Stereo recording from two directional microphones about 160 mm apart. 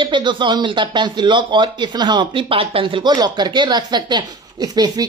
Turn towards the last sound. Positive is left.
turn(degrees=-25)  # may be behind; listen again after turning